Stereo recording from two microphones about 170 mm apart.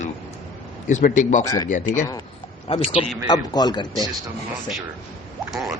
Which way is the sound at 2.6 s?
30° left (ahead or behind).